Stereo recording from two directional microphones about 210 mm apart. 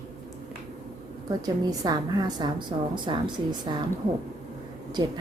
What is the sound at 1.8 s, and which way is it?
A woman's voice, 20° right (ahead or behind).